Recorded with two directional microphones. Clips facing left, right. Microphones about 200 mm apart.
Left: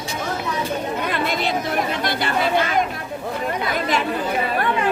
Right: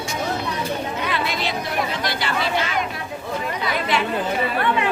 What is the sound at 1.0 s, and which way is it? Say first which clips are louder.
Chatter: left 2 dB; 50° left (ahead or behind).